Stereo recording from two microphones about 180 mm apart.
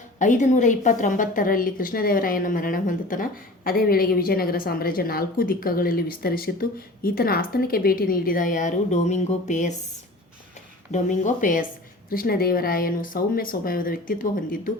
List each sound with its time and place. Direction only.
0.2 s a woman's voice: 45° left (ahead or behind)
10.9 s a woman's voice: 45° left (ahead or behind)